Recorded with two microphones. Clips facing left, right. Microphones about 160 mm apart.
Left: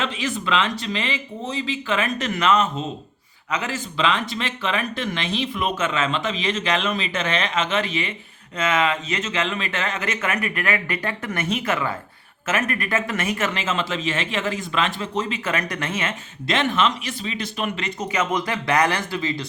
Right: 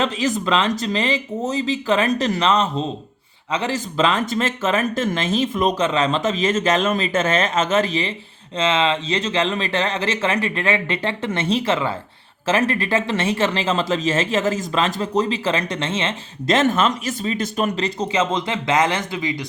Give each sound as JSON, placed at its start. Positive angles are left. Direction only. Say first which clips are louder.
{"t": 0.0, "sound": "speech", "louder": "right 5 dB", "side_deg": -40}
{"t": 16.5, "sound": "speech", "louder": "right 4 dB", "side_deg": -40}